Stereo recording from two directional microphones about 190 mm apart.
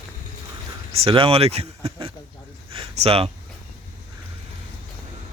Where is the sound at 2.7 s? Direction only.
30° right (ahead or behind).